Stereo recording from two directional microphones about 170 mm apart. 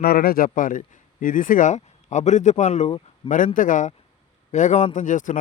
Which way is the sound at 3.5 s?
50° left (ahead or behind).